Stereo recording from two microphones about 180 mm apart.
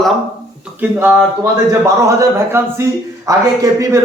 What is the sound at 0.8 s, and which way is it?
A man's voice, 10° right (ahead or behind).